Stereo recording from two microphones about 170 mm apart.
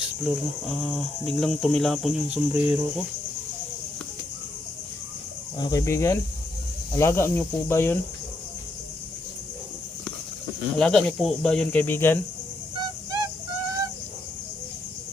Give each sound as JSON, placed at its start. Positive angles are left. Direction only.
{"t": 0.0, "sound": "speech", "side_deg": 0}
{"t": 5.5, "sound": "speech", "side_deg": 20}
{"t": 10.8, "sound": "speech", "side_deg": 5}